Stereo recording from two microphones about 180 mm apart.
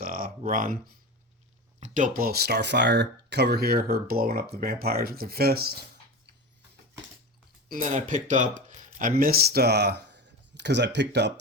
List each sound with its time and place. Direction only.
0.0 s a sound: 50° right (ahead or behind)
0.5 s speech: 50° right (ahead or behind)
7.7 s speech: 45° right (ahead or behind); by 11.3 s 75° right (ahead or behind)